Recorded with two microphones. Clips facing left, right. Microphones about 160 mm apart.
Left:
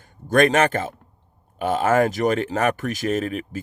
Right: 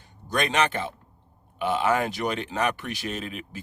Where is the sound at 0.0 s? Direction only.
50° left (ahead or behind).